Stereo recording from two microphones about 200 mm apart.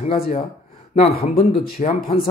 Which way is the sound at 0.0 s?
30° left (ahead or behind).